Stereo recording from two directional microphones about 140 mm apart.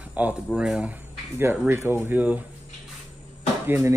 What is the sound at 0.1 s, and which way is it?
Speech, 10° right (ahead or behind).